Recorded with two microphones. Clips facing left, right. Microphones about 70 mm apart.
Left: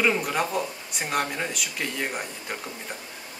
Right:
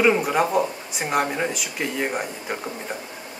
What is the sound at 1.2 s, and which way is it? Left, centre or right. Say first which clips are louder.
Speech: right 5 dB; centre.